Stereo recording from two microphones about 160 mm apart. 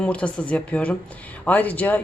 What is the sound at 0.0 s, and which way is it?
Speech, 5° left (ahead or behind).